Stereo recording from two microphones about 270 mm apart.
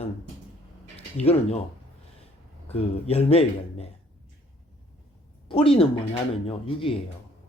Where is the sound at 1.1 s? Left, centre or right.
Left.